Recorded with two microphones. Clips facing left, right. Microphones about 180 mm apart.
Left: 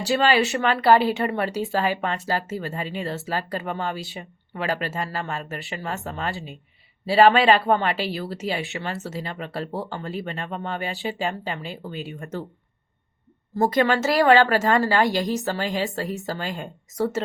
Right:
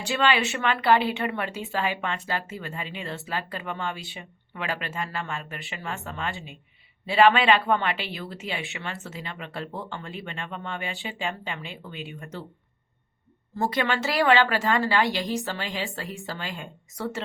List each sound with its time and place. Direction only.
0.0 s speech: 35° left (ahead or behind)
13.6 s a woman's voice: 40° left (ahead or behind)